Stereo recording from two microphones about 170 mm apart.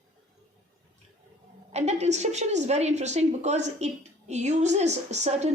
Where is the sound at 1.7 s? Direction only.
40° right (ahead or behind).